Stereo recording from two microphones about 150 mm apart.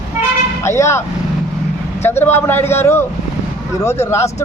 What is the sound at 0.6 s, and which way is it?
A man's voice, 20° left (ahead or behind).